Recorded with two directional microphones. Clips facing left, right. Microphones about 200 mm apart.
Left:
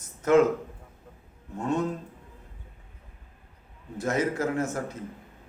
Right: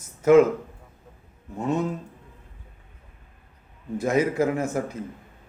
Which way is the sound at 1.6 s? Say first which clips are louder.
Right 2 dB; 10° right (ahead or behind).